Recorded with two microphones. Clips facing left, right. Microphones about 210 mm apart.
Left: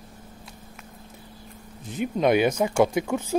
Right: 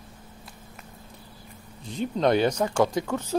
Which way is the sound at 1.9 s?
10° left (ahead or behind).